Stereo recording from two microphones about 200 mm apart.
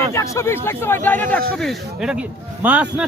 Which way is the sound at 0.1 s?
15° left (ahead or behind).